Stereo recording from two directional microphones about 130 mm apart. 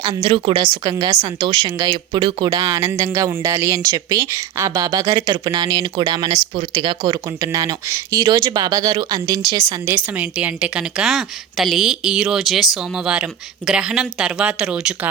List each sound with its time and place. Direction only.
0.0 s a woman's voice: 40° right (ahead or behind); by 15.1 s 5° right (ahead or behind)